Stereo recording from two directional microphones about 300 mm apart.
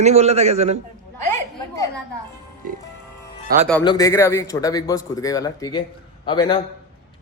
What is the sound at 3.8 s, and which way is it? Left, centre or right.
A man's voice, centre.